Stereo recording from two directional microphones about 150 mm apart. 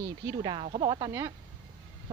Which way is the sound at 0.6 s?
40° right (ahead or behind).